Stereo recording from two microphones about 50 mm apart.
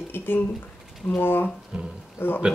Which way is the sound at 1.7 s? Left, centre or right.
Centre.